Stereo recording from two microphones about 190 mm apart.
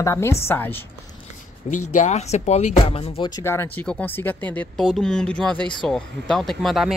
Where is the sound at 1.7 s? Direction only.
40° left (ahead or behind); by 7.0 s centre (ahead or behind).